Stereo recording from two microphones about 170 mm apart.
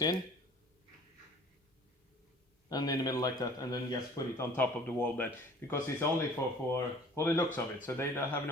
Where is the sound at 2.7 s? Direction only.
25° left (ahead or behind).